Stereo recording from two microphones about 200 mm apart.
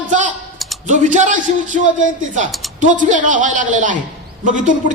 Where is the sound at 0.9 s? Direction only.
40° right (ahead or behind).